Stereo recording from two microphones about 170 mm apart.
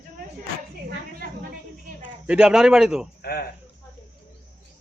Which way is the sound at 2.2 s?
5° right (ahead or behind).